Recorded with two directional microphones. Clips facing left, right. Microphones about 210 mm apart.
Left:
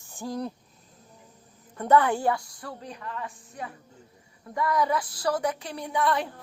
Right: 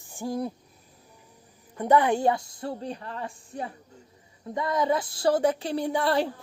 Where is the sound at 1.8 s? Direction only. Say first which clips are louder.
Right 1 dB; 15° right (ahead or behind).